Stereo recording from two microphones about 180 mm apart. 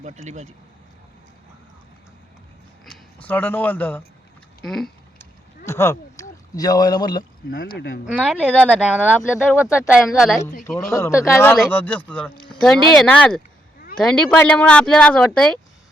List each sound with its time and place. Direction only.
0.0 s speech: 40° right (ahead or behind)
2.8 s speech: 5° left (ahead or behind)
5.6 s a sound: 15° left (ahead or behind)
6.6 s speech: 20° left (ahead or behind)
7.5 s speech: 55° left (ahead or behind)
8.0 s speech: 5° right (ahead or behind)
10.9 s speech: 15° left (ahead or behind)